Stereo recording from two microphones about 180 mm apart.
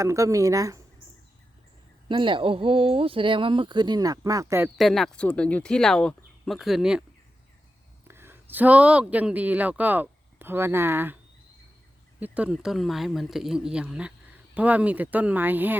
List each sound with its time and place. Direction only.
0.0 s speech: 15° right (ahead or behind)
2.0 s speech: 25° right (ahead or behind)
4.8 s speech: centre (ahead or behind)
8.0 s speech: 10° right (ahead or behind)
12.2 s speech: 5° right (ahead or behind)